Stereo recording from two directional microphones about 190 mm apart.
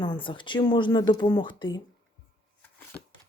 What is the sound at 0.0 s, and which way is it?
Speech, 25° left (ahead or behind).